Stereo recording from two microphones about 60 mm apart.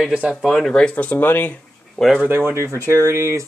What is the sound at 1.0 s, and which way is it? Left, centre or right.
Speech, left.